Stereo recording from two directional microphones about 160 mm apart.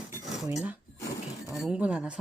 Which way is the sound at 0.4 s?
20° right (ahead or behind).